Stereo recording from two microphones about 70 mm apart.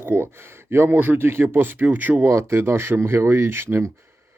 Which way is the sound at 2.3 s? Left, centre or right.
Right.